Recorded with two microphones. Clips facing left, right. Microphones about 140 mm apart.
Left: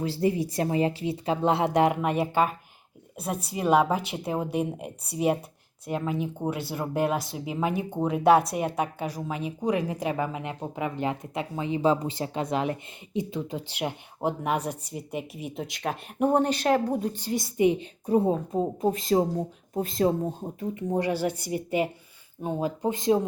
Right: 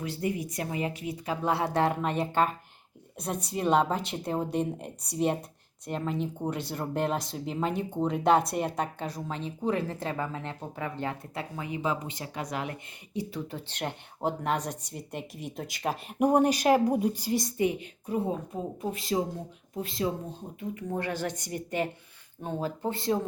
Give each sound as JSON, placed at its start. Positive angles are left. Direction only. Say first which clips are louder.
{"t": 0.0, "sound": "speech", "louder": "left 6 dB", "side_deg": 30}
{"t": 17.6, "sound": "speech", "louder": "left 8 dB", "side_deg": 20}
{"t": 18.0, "sound": "speech", "louder": "left 7 dB", "side_deg": 35}
{"t": 21.0, "sound": "speech", "louder": "left 5 dB", "side_deg": 10}